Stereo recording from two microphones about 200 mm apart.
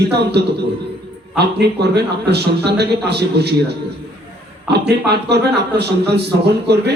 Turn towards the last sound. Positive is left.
turn(degrees=-55)  # may be behind; listen again after turning